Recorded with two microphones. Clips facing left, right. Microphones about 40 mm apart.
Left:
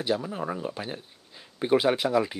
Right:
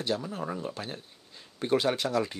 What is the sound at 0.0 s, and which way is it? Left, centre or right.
Speech, centre.